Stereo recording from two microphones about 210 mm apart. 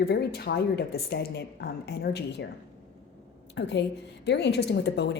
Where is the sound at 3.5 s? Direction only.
55° left (ahead or behind).